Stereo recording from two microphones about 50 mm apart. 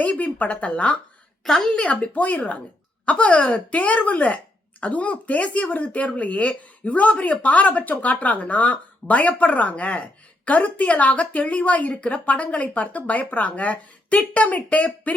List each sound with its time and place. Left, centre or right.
0.0 s speech: left
1.5 s a woman's voice: centre
1.8 s speech: left